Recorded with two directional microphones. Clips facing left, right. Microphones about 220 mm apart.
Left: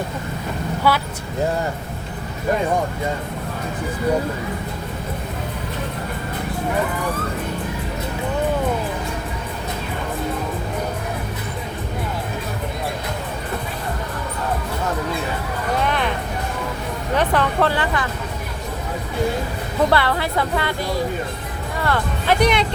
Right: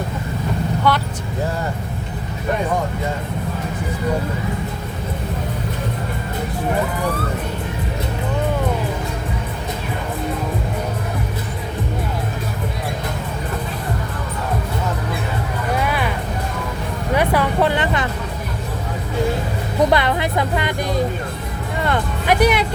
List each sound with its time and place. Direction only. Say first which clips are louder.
0.9 s speech: even; 5° left (ahead or behind)
15.8 s music: left 1 dB; 5° right (ahead or behind)
17.2 s vehicle: right 1 dB; 10° right (ahead or behind)
19.9 s music: right 1 dB; 20° right (ahead or behind)
22.4 s music: right 2 dB; 5° right (ahead or behind)